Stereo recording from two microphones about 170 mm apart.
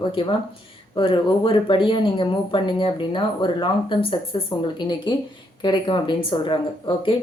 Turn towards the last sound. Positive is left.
turn(degrees=30)  # may be behind; listen again after turning